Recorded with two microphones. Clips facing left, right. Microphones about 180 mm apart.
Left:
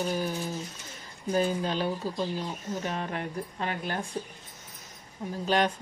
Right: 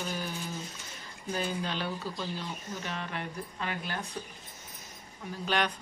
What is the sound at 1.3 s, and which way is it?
A woman's voice, 40° left (ahead or behind).